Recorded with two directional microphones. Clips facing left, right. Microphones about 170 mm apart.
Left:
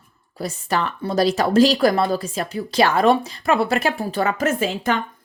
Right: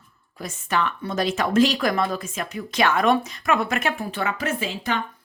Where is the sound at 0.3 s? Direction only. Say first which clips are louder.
Left 2 dB; 35° left (ahead or behind).